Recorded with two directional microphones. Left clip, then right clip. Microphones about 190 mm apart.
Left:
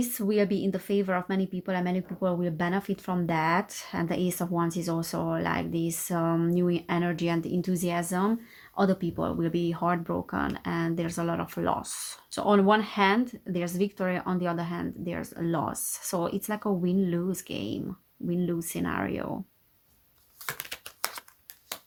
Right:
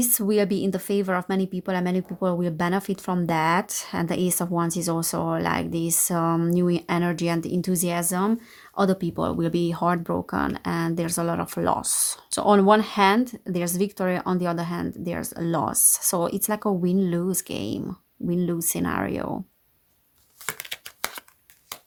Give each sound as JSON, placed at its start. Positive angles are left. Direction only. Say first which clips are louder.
{"t": 0.0, "sound": "a woman's voice", "louder": "right 4 dB", "side_deg": -40}
{"t": 20.6, "sound": "crumpling", "louder": "right 3 dB", "side_deg": -20}